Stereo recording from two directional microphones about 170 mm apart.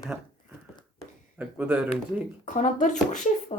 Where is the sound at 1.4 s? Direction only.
5° right (ahead or behind).